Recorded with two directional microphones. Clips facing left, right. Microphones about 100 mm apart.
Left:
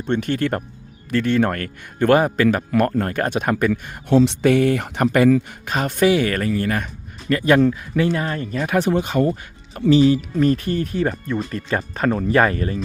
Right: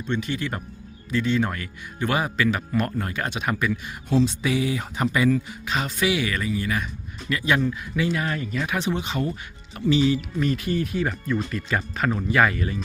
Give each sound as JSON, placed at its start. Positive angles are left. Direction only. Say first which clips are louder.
{"t": 0.0, "sound": "speech", "louder": "left 6 dB", "side_deg": 55}
{"t": 4.1, "sound": "speech", "louder": "left 7 dB", "side_deg": 65}